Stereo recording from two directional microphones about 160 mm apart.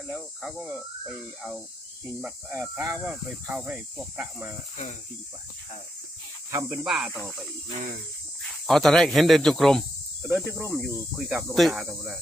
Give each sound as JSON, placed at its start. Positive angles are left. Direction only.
{"t": 0.1, "sound": "speech", "side_deg": 0}
{"t": 2.5, "sound": "speech", "side_deg": -15}
{"t": 6.5, "sound": "speech", "side_deg": -20}
{"t": 6.8, "sound": "speech", "side_deg": 0}
{"t": 8.4, "sound": "speech", "side_deg": 0}
{"t": 10.2, "sound": "speech", "side_deg": -15}
{"t": 10.7, "sound": "speech", "side_deg": 0}